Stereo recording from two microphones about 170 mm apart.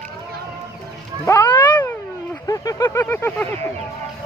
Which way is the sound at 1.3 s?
25° left (ahead or behind).